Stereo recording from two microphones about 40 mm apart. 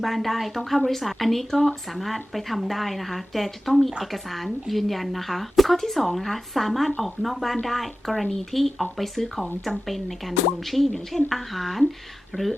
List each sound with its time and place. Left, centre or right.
0.0 s speech: centre
12.3 s speech: left